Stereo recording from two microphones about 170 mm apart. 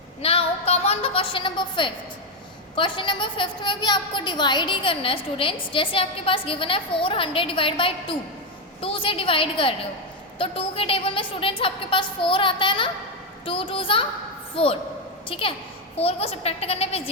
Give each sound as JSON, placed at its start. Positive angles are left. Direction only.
{"t": 0.2, "sound": "a woman's voice", "side_deg": 35}